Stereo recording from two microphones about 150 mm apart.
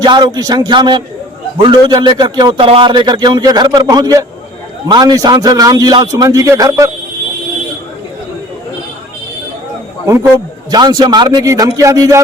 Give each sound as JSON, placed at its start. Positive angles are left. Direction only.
{"t": 0.0, "sound": "a man's voice", "side_deg": -30}
{"t": 10.7, "sound": "a man's voice", "side_deg": -25}